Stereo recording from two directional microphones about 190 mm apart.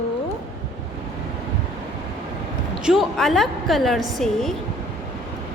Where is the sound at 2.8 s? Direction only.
Centre (ahead or behind).